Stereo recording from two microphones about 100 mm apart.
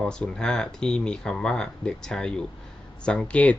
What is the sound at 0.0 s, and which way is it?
Speech, 10° left (ahead or behind).